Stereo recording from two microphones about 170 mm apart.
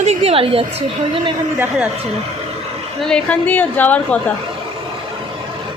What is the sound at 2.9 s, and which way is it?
A woman's voice, 5° left (ahead or behind).